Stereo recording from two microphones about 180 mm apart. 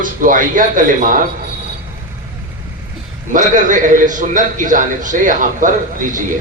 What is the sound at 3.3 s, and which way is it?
A man's voice, 45° right (ahead or behind).